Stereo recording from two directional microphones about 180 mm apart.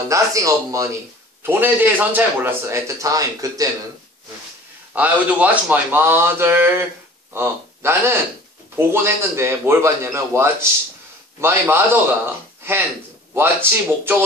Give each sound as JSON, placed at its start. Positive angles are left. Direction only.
{"t": 0.1, "sound": "a man's voice", "side_deg": -20}
{"t": 4.9, "sound": "a man's voice", "side_deg": -10}
{"t": 13.3, "sound": "a man's voice", "side_deg": -10}